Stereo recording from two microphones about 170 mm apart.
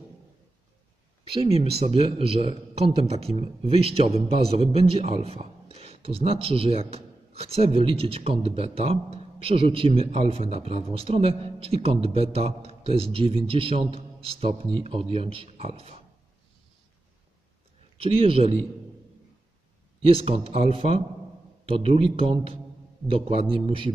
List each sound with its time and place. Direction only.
1.3 s a man's voice: 35° right (ahead or behind)
17.9 s a man's voice: 30° right (ahead or behind)
20.1 s a man's voice: 35° right (ahead or behind)